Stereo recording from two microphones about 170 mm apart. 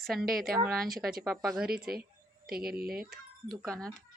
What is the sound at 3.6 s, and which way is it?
Speech, 5° left (ahead or behind).